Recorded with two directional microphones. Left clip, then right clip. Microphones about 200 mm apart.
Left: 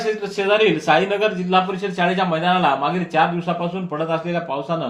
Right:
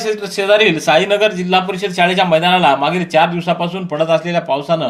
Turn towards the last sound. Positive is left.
turn(degrees=-35)  # may be behind; listen again after turning